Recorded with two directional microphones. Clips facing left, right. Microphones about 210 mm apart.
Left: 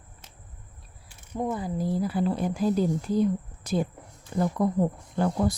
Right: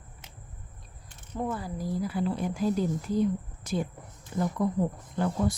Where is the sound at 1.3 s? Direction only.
15° left (ahead or behind).